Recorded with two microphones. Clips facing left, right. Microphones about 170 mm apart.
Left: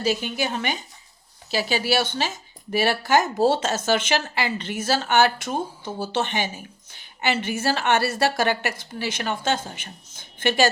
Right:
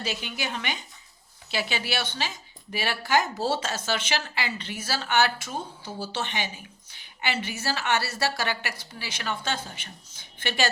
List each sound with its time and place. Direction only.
0.0 s a woman's voice: 45° left (ahead or behind)